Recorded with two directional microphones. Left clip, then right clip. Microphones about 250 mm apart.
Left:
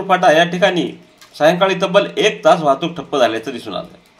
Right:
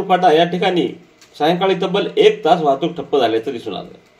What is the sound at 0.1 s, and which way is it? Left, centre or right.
A man's voice, left.